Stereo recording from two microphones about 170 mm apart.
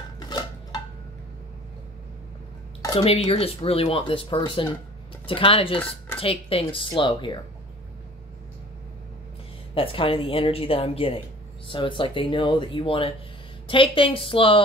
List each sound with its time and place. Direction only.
0.3 s dishes: 25° left (ahead or behind)
3.0 s speech: 35° left (ahead or behind)
9.8 s speech: 30° left (ahead or behind)